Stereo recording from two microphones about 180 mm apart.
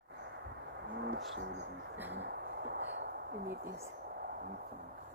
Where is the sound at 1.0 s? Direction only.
75° right (ahead or behind).